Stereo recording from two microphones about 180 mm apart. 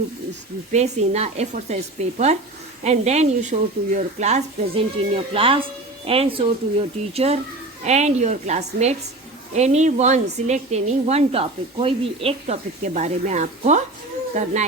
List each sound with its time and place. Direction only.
0.7 s speech: 40° right (ahead or behind)